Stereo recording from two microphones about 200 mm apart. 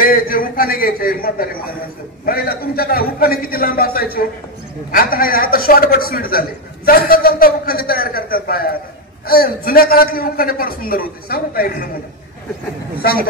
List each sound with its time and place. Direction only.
0.0 s a man's voice: 45° left (ahead or behind)